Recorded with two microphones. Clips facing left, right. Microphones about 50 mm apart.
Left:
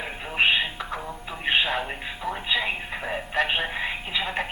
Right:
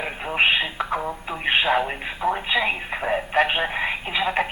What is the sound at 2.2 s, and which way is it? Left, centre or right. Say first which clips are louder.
Speech: right 5 dB; right.